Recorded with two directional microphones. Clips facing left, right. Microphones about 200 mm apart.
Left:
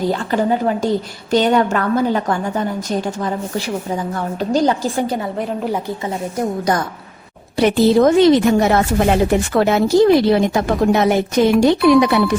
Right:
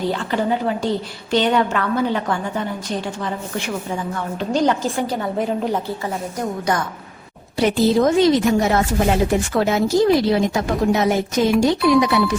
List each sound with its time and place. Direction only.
0.1 s a woman's voice: 45° left (ahead or behind)
4.5 s a woman's voice: 35° left (ahead or behind)
5.4 s a woman's voice: centre (ahead or behind)
7.6 s speech: 65° left (ahead or behind)